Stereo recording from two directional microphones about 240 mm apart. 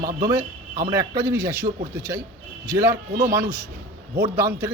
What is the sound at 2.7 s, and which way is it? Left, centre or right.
Speech, centre.